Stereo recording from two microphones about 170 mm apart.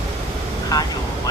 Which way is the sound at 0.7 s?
20° left (ahead or behind).